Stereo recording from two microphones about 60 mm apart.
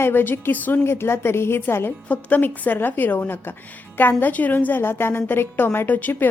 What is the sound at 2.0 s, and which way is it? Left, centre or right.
A woman's voice, left.